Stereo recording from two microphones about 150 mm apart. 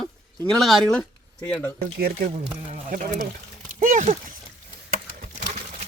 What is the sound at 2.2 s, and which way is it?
Speech, 55° right (ahead or behind).